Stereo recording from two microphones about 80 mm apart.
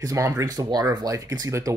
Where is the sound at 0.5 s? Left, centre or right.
Right.